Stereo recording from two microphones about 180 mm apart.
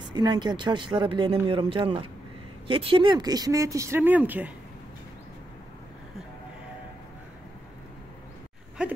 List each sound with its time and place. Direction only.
0.1 s speech: 25° right (ahead or behind); by 4.5 s 10° right (ahead or behind)